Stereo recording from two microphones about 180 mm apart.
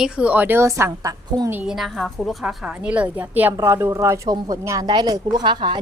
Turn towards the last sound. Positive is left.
turn(degrees=-25)  # may be behind; listen again after turning